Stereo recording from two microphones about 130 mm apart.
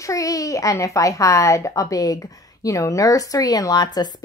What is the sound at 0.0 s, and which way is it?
A child's voice, 25° left (ahead or behind).